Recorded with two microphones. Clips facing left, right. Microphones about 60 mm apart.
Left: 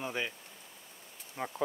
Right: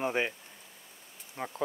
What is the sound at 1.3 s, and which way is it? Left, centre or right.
Speech, centre.